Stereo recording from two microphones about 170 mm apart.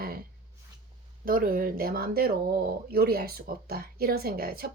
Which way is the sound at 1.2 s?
55° right (ahead or behind).